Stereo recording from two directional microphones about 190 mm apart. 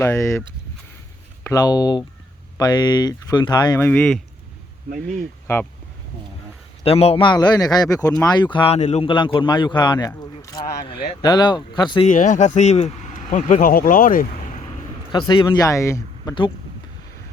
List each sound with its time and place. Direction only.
0.0 s speech: 15° left (ahead or behind)
1.5 s speech: 20° left (ahead or behind)
3.8 s speech: 5° left (ahead or behind)
5.5 s speech: 10° left (ahead or behind)
6.8 s speech: 30° left (ahead or behind)
12.0 s speech: 40° left (ahead or behind)
15.1 s speech: 25° left (ahead or behind)